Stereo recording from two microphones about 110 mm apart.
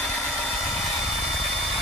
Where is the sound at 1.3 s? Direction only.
Centre (ahead or behind).